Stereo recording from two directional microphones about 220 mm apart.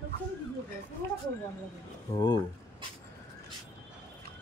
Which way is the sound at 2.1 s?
20° left (ahead or behind).